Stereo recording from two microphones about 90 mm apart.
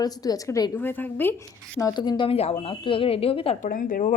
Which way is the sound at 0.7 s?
20° left (ahead or behind).